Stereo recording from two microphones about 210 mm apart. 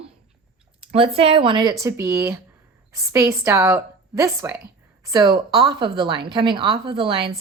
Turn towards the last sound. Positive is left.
turn(degrees=-25)  # may be behind; listen again after turning